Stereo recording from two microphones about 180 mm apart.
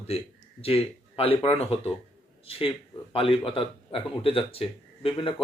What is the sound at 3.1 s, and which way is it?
Speech, 30° left (ahead or behind).